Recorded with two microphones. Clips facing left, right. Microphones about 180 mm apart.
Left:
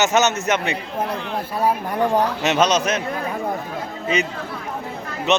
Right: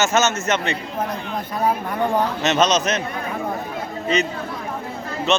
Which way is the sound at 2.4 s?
10° left (ahead or behind).